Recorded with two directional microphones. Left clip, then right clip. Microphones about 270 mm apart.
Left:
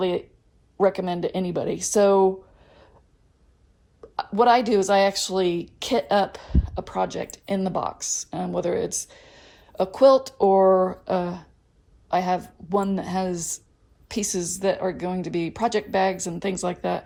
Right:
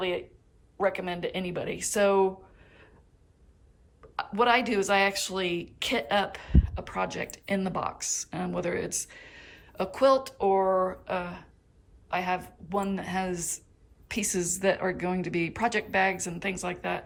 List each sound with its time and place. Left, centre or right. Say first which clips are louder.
0.9 s speech: left 5 dB; centre
4.0 s speech: left 6 dB; centre